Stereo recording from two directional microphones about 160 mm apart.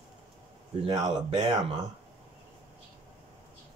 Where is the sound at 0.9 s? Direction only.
25° right (ahead or behind).